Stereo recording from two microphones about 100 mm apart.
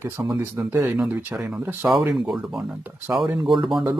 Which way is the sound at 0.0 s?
25° right (ahead or behind).